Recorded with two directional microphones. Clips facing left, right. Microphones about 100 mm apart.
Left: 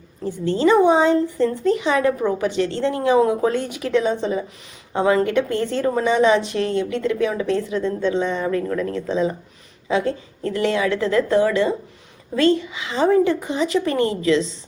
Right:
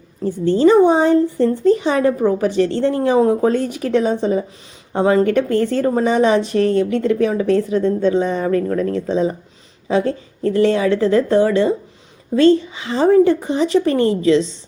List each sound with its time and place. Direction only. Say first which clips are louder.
0.3 s a woman's voice: right 4 dB; 35° right (ahead or behind)